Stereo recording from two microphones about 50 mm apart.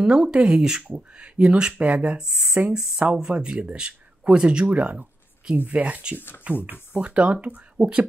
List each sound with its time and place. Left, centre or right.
0.0 s speech: centre
1.8 s speech: right
2.1 s speech: centre
6.1 s speech: left
6.4 s speech: right